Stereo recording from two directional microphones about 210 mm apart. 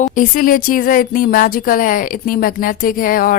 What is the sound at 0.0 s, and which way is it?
Speech, 40° left (ahead or behind).